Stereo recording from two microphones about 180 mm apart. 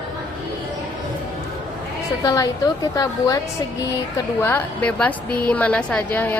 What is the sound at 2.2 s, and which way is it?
A woman's voice, 20° left (ahead or behind).